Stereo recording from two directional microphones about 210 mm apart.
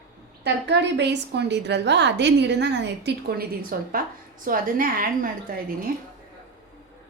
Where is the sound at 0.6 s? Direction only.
55° right (ahead or behind).